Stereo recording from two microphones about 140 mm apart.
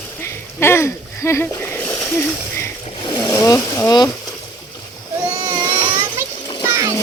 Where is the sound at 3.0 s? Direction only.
35° left (ahead or behind).